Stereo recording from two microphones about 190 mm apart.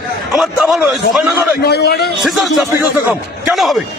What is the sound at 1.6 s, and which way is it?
Speech, 55° left (ahead or behind).